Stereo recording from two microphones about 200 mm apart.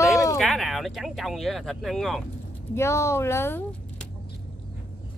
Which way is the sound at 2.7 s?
15° left (ahead or behind).